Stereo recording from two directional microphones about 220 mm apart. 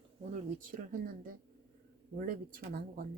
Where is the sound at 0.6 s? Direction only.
40° right (ahead or behind).